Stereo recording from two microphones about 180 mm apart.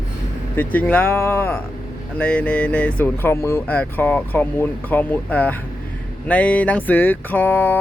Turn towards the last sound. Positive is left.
turn(degrees=10)  # may be behind; listen again after turning